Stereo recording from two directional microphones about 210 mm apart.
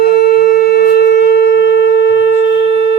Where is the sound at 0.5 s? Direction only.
50° left (ahead or behind).